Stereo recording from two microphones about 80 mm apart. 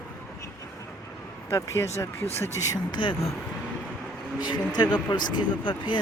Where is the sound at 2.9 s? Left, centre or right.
Left.